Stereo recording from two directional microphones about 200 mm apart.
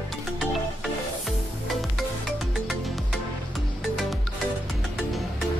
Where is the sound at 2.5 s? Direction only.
Centre (ahead or behind).